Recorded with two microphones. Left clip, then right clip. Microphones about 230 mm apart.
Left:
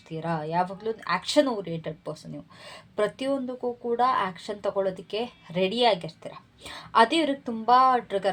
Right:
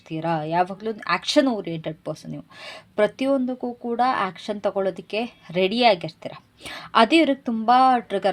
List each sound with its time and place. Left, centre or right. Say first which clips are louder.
0.1 s speech: right 5 dB; right